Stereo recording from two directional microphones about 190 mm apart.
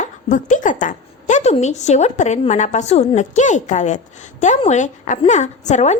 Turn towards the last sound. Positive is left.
turn(degrees=35)  # may be behind; listen again after turning